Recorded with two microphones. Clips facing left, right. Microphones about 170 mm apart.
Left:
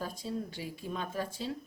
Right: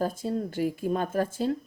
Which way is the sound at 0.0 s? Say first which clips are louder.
Right 8 dB; 50° right (ahead or behind).